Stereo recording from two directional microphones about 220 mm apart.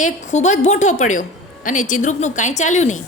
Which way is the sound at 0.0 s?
30° left (ahead or behind).